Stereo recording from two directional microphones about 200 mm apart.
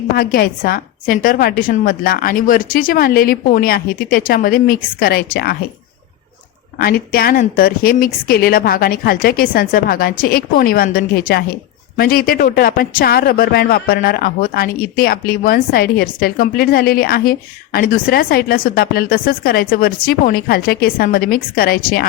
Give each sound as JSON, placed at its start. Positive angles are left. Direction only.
{"t": 0.2, "sound": "a man's voice", "side_deg": 50}
{"t": 6.7, "sound": "a man's voice", "side_deg": 45}